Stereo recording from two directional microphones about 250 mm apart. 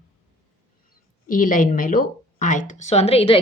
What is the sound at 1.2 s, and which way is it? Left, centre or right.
Speech, left.